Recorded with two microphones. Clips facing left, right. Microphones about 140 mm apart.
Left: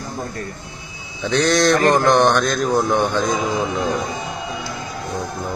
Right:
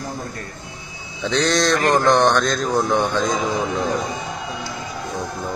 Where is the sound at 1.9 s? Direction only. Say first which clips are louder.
Right 2 dB; 20° left (ahead or behind).